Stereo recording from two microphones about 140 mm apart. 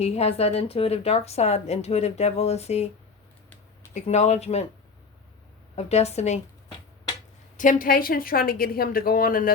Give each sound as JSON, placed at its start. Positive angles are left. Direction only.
{"t": 0.0, "sound": "a woman's voice", "side_deg": 45}
{"t": 3.9, "sound": "a woman's voice", "side_deg": 55}
{"t": 5.7, "sound": "a woman's voice", "side_deg": 50}
{"t": 7.5, "sound": "a woman's voice", "side_deg": 70}